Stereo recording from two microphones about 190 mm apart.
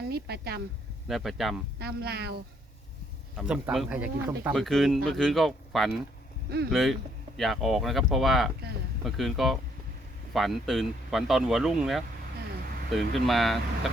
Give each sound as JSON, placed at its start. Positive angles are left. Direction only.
{"t": 0.1, "sound": "speech", "side_deg": -55}
{"t": 1.0, "sound": "speech", "side_deg": 0}
{"t": 1.8, "sound": "speech", "side_deg": -60}
{"t": 3.3, "sound": "speech", "side_deg": -5}